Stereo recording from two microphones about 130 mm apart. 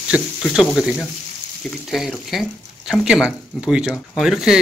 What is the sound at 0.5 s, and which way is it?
Speech, 5° right (ahead or behind).